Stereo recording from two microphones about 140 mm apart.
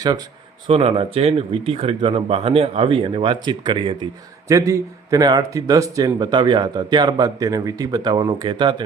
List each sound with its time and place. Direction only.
0.7 s speech: 45° right (ahead or behind)
4.4 s a man's voice: 25° right (ahead or behind)